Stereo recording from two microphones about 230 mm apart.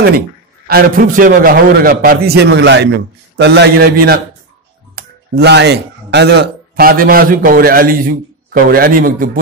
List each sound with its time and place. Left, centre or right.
0.7 s a man's voice: right